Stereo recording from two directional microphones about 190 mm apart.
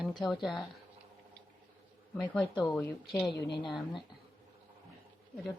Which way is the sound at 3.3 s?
60° left (ahead or behind).